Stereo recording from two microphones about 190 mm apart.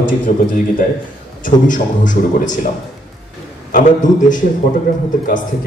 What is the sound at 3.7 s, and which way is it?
Speech, 40° left (ahead or behind).